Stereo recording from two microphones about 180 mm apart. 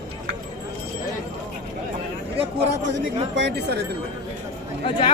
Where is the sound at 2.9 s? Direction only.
75° right (ahead or behind).